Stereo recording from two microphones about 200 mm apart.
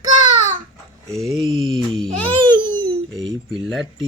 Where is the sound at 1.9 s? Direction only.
5° left (ahead or behind).